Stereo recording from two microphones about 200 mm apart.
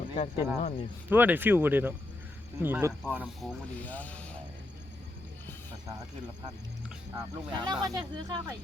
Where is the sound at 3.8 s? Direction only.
10° left (ahead or behind).